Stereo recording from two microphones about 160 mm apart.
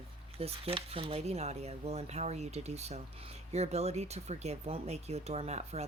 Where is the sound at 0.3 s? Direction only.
35° right (ahead or behind).